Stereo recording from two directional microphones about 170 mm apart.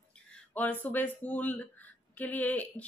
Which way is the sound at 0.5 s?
10° left (ahead or behind).